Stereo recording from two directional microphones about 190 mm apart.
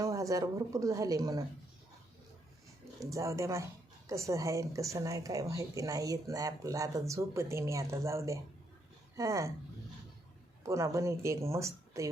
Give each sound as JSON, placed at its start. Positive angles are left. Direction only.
{"t": 0.0, "sound": "a woman's voice", "side_deg": -15}
{"t": 3.1, "sound": "a woman's voice", "side_deg": -15}
{"t": 10.6, "sound": "a woman's voice", "side_deg": -15}